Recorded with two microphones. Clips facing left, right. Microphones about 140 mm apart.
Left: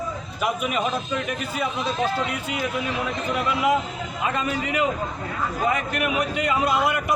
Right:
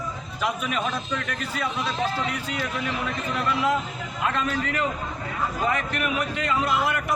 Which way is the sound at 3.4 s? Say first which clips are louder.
Left 2 dB; 10° left (ahead or behind).